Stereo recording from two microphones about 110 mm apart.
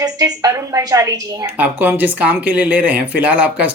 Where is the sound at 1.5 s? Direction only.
15° right (ahead or behind).